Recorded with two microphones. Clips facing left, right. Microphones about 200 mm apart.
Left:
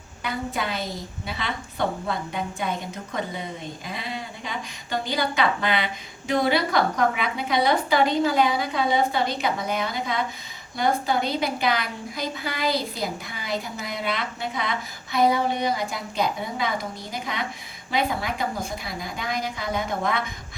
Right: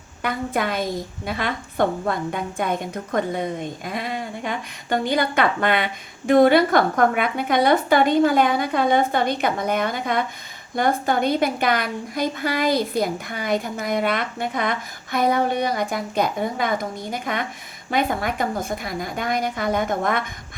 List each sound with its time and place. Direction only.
0.2 s a woman's voice: 55° right (ahead or behind)